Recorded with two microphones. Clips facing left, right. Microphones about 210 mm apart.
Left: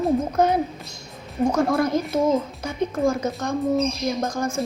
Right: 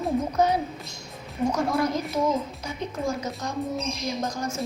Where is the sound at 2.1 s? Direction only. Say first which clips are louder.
Left 5 dB; 50° left (ahead or behind).